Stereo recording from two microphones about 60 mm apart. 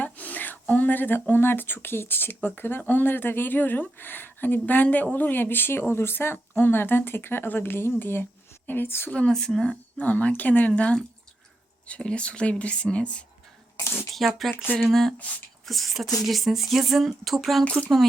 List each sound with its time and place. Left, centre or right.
0.0 s a sound: left
1.3 s speech: left
9.0 s speech: centre
9.3 s speech: centre
10.0 s speech: left
14.2 s speech: centre
15.6 s speech: centre